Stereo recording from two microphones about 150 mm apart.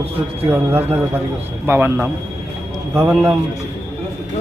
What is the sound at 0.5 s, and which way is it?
Speech, 15° right (ahead or behind).